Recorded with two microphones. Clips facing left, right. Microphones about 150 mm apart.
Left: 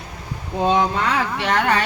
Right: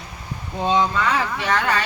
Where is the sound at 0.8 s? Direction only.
65° left (ahead or behind).